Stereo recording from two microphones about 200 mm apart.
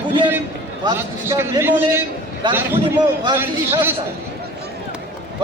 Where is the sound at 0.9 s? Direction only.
10° right (ahead or behind).